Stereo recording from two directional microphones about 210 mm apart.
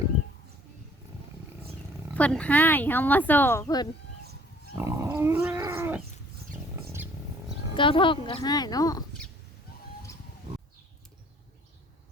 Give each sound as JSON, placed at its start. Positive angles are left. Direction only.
{"t": 2.1, "sound": "speech", "side_deg": 5}
{"t": 4.7, "sound": "dog", "side_deg": -15}
{"t": 7.8, "sound": "speech", "side_deg": 25}